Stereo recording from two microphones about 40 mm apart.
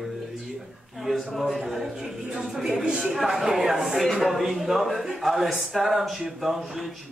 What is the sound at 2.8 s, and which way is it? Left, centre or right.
Speech, centre.